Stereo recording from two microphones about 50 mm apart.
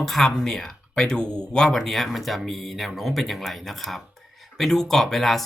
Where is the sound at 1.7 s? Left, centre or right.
Centre.